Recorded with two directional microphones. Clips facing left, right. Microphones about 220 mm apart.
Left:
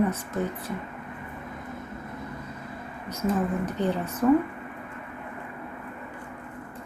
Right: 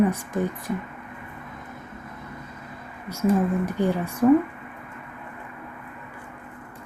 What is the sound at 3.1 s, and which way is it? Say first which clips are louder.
Speech: right 4 dB; 10° right (ahead or behind).